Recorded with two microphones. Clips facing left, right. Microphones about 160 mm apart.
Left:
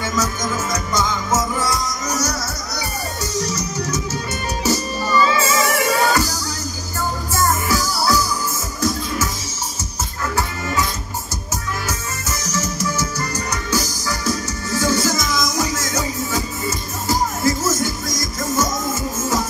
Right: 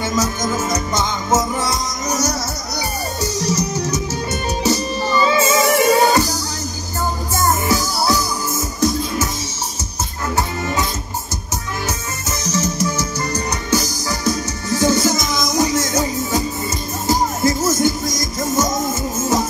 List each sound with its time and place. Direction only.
0.0 s music: 25° right (ahead or behind)
5.0 s music: 25° right (ahead or behind)
7.3 s music: 25° right (ahead or behind)
10.3 s music: 20° right (ahead or behind)
12.3 s music: 20° right (ahead or behind)